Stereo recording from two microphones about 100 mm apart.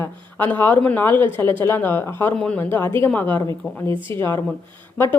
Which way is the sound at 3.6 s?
5° left (ahead or behind).